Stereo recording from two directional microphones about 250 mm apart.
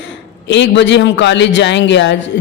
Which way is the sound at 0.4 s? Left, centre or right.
Left.